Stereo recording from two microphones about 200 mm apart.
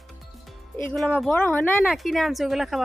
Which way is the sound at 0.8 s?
5° left (ahead or behind).